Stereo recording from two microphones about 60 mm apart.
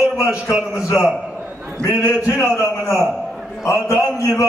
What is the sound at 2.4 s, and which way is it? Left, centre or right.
Speech, left.